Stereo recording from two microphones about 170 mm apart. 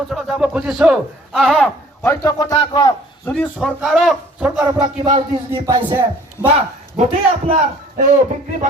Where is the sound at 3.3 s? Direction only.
Centre (ahead or behind).